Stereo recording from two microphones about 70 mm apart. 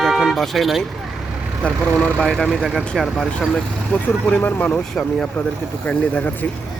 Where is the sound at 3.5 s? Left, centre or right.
Centre.